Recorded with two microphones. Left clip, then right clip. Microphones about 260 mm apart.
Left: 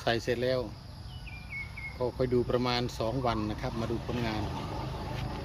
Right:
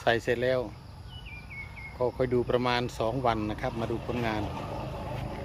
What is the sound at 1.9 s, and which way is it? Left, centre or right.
Speech, centre.